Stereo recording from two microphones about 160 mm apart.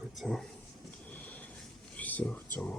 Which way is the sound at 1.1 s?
10° left (ahead or behind).